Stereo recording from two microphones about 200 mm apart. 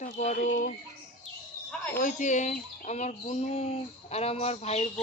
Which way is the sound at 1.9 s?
40° left (ahead or behind).